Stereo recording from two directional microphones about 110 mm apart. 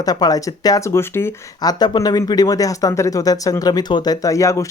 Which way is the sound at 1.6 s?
40° left (ahead or behind).